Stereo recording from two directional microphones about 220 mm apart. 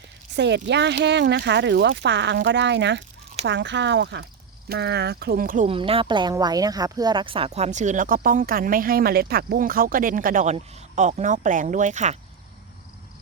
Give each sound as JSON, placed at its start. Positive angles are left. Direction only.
{"t": 0.3, "sound": "speech", "side_deg": -50}
{"t": 5.6, "sound": "speech", "side_deg": -25}